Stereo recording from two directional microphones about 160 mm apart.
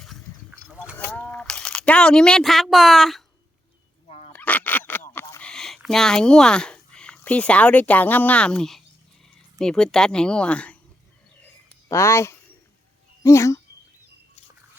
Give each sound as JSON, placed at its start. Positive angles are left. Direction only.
{"t": 0.9, "sound": "a sound", "side_deg": 10}
{"t": 4.3, "sound": "goose", "side_deg": 10}
{"t": 5.4, "sound": "speech", "side_deg": 5}
{"t": 11.9, "sound": "speech", "side_deg": 15}